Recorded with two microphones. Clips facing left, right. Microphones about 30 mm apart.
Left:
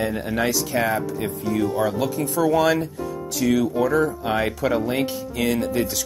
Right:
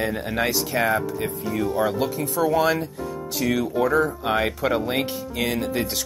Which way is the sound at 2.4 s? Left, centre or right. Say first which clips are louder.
Left 2 dB; centre.